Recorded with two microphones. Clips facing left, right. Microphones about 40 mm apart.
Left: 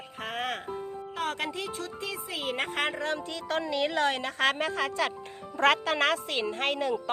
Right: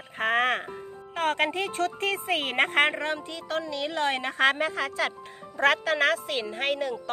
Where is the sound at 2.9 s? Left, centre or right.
Right.